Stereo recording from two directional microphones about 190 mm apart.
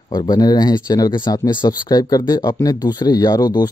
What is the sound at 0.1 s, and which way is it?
Speech, 20° left (ahead or behind).